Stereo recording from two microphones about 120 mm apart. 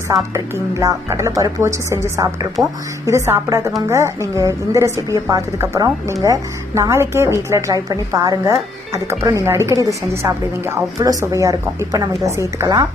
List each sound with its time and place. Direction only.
0.1 s speech: 30° right (ahead or behind)